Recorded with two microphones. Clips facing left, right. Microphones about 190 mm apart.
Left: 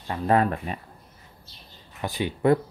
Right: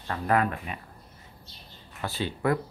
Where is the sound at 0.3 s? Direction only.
30° left (ahead or behind).